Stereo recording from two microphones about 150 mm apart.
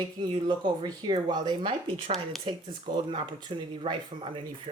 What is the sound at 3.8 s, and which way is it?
Speech, 35° right (ahead or behind).